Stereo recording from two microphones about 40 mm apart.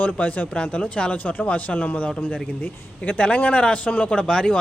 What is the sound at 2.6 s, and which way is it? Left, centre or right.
A man's voice, left.